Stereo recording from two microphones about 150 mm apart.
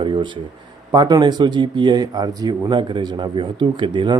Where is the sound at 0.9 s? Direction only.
25° right (ahead or behind).